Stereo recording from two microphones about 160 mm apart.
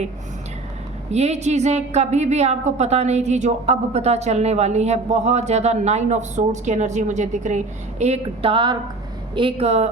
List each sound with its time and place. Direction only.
1.1 s a woman's voice: 45° right (ahead or behind)